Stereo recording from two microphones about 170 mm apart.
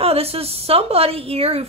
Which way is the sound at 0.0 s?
35° right (ahead or behind).